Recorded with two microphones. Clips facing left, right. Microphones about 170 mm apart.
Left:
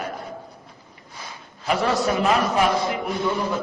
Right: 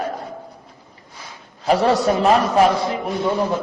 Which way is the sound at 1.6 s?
35° right (ahead or behind).